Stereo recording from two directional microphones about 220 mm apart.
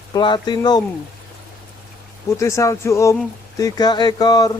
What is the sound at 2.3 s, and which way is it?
Speech, 15° left (ahead or behind).